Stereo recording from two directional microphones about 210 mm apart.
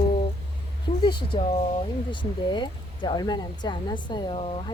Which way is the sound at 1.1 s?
20° left (ahead or behind).